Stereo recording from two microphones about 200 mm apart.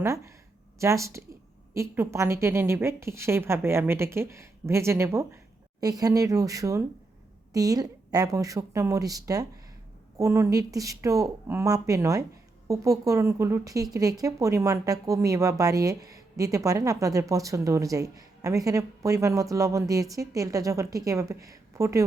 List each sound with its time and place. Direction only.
0.0 s a woman's voice: 15° right (ahead or behind)